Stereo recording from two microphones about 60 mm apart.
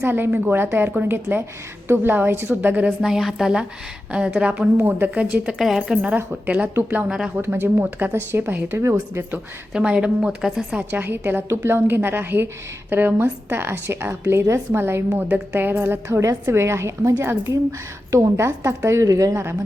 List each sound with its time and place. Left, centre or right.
0.0 s a woman's voice: right
3.0 s speech: centre
4.4 s a woman's voice: centre
4.8 s a woman's voice: right
5.2 s a woman's voice: centre
5.5 s a woman's voice: centre
5.9 s a woman's voice: centre
7.4 s a woman's voice: right
8.1 s speech: right
9.7 s speech: centre
10.9 s a woman's voice: right
17.5 s a woman's voice: right